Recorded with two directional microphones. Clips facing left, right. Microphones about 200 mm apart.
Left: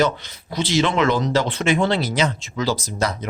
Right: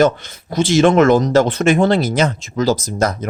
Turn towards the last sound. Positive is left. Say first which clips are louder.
# right 5 dB
turn(degrees=-45)  # may be behind; listen again after turning